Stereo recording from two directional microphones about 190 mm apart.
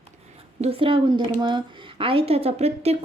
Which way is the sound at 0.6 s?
30° right (ahead or behind).